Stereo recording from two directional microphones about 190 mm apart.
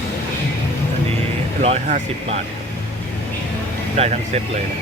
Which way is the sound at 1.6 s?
35° right (ahead or behind).